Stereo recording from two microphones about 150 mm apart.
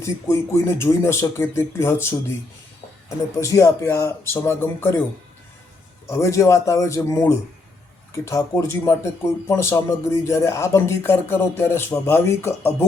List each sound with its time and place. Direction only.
0.0 s speech: 20° left (ahead or behind)
3.4 s speech: 20° left (ahead or behind)
6.1 s speech: 20° left (ahead or behind)